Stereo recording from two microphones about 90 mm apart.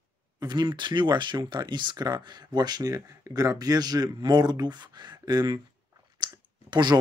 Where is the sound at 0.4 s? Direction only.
50° right (ahead or behind).